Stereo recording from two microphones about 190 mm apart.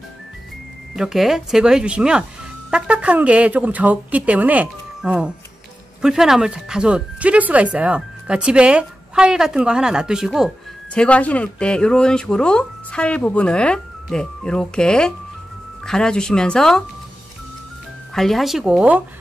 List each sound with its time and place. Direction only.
0.9 s speech: centre (ahead or behind)
18.1 s speech: centre (ahead or behind)